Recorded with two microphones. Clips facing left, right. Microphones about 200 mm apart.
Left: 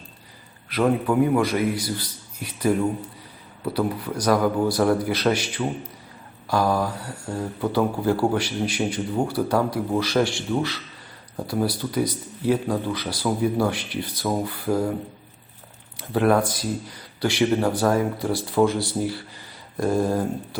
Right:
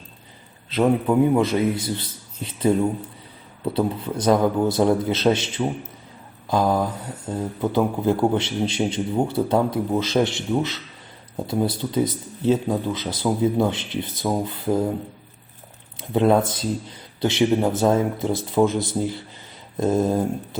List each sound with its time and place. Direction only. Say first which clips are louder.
0.7 s speech: right 2 dB; 20° right (ahead or behind)
16.0 s speech: right 2 dB; 20° right (ahead or behind)